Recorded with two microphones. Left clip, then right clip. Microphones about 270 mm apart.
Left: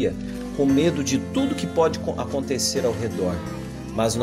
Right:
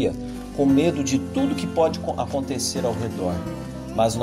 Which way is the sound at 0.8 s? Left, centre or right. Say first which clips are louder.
Even; centre.